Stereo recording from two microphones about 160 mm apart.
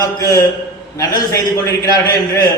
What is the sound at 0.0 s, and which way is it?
A man's voice, 20° left (ahead or behind).